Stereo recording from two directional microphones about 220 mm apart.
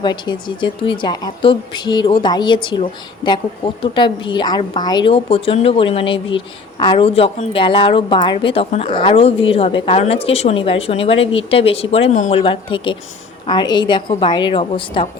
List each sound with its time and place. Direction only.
0.0 s a woman's voice: 20° left (ahead or behind)